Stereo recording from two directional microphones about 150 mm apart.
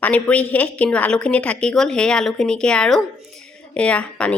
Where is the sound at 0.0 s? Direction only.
10° left (ahead or behind).